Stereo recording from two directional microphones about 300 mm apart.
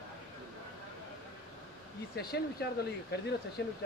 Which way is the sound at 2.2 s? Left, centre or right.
Left.